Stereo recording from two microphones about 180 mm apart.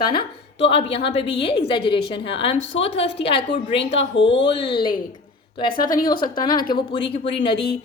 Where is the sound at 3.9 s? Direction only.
85° left.